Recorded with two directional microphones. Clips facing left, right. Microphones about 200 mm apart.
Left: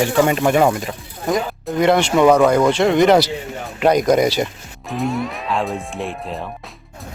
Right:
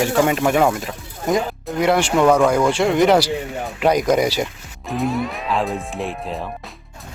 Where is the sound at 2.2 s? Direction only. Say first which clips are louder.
Left 2 dB; 10° left (ahead or behind).